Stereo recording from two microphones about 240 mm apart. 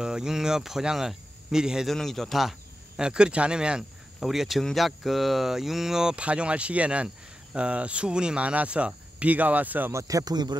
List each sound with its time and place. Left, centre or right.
0.0 s speech: centre